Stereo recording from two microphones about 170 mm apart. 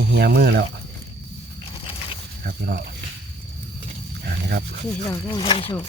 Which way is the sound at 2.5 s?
65° right (ahead or behind).